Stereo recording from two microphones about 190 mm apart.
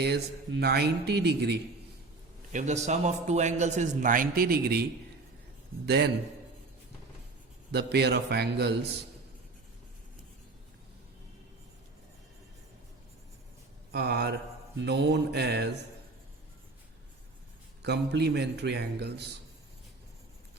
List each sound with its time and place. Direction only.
0.0 s speech: 60° right (ahead or behind)
2.5 s a man's voice: 40° right (ahead or behind); by 6.1 s 60° right (ahead or behind)
7.7 s speech: 60° right (ahead or behind)
13.9 s speech: 60° right (ahead or behind)
17.8 s speech: 60° right (ahead or behind)